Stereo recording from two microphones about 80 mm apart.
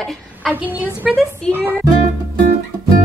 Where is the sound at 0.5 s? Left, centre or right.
Right.